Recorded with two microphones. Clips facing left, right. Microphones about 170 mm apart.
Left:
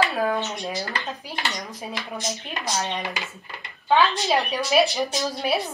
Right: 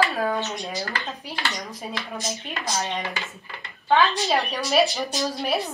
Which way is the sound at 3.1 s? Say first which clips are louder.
Even; 15° left (ahead or behind).